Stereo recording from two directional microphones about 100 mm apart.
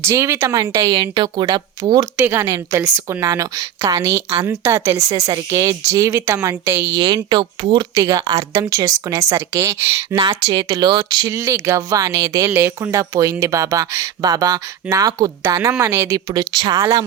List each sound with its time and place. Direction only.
0.0 s speech: 25° right (ahead or behind)
0.9 s speech: 45° right (ahead or behind)
2.1 s speech: 20° right (ahead or behind)
2.4 s speech: 30° right (ahead or behind)
6.1 s speech: 20° right (ahead or behind)
6.9 s speech: 45° right (ahead or behind); by 10.2 s 25° right (ahead or behind)
10.2 s speech: 40° right (ahead or behind)
11.3 s speech: 30° right (ahead or behind)
15.9 s speech: 25° right (ahead or behind)
16.1 s speech: 40° right (ahead or behind)